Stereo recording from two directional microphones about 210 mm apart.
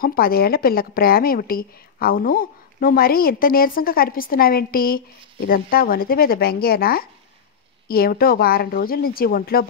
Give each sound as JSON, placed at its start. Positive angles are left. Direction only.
{"t": 0.0, "sound": "speech", "side_deg": 45}